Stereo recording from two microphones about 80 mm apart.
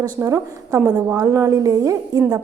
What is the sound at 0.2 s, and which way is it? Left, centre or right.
A woman's voice, right.